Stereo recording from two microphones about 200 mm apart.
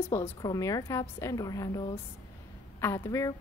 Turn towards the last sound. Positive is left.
turn(degrees=15)  # may be behind; listen again after turning